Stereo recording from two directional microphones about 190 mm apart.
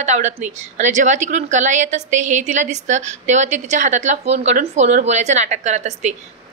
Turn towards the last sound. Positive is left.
turn(degrees=-40)  # may be behind; listen again after turning